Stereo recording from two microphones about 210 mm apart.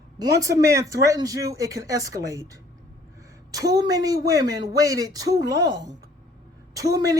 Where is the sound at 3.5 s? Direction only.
15° right (ahead or behind).